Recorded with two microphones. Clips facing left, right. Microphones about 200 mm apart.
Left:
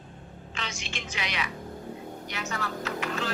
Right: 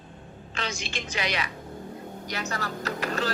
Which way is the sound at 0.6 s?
40° right (ahead or behind).